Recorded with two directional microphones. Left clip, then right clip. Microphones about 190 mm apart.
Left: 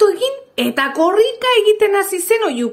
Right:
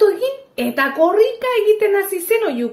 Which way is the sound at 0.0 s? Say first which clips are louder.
Left 1 dB; 30° left (ahead or behind).